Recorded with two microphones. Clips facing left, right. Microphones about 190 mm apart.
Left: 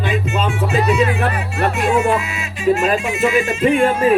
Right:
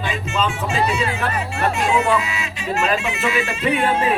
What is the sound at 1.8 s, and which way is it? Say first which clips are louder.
Speech: left 3 dB; 55° left (ahead or behind).